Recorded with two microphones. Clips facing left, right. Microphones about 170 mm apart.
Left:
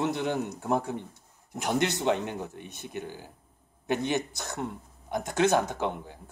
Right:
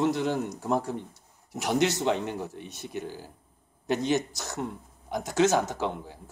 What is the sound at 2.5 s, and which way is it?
Speech, 55° left (ahead or behind).